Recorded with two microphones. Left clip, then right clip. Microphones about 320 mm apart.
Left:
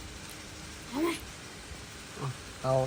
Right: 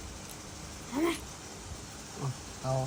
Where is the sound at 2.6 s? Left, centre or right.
Centre.